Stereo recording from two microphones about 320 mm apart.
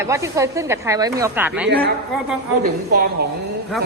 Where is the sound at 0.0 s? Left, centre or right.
Centre.